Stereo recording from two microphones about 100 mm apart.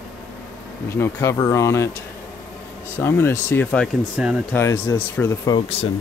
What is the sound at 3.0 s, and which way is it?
Speech, 25° left (ahead or behind).